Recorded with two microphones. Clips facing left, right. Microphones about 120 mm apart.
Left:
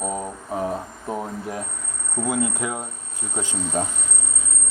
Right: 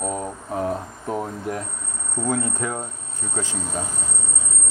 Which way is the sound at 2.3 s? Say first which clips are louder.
Even; 10° left (ahead or behind).